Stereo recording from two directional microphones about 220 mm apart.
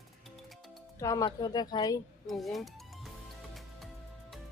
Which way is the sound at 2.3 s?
Centre (ahead or behind).